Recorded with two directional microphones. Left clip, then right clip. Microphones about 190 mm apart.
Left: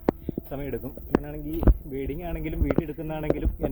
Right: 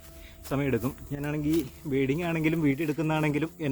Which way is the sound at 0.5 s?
35° right (ahead or behind).